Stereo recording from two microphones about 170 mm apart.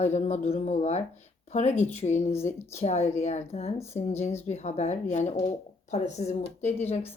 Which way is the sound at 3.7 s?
15° left (ahead or behind).